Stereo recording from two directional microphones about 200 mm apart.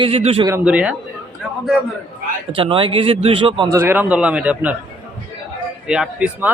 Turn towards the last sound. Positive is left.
turn(degrees=-5)  # may be behind; listen again after turning